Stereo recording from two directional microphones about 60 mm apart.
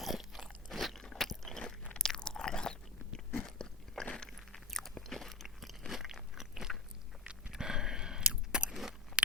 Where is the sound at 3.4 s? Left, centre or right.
Centre.